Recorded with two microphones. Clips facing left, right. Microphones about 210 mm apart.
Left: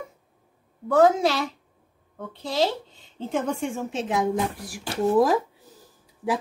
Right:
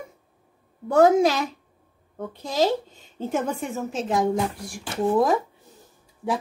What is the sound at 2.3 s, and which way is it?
Speech, 45° right (ahead or behind).